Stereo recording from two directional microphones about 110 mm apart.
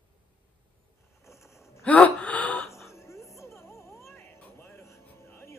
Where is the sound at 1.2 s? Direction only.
25° left (ahead or behind).